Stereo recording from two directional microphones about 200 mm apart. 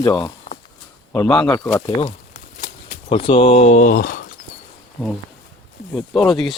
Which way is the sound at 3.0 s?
30° left (ahead or behind).